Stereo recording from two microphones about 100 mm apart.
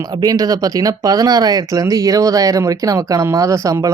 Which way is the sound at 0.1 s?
40° right (ahead or behind).